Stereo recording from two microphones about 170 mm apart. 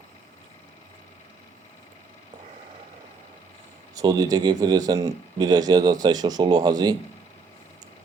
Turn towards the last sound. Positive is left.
turn(degrees=-25)  # may be behind; listen again after turning